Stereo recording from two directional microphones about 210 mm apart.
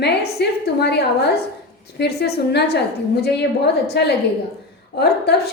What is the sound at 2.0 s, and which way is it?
A woman's voice, 50° left (ahead or behind).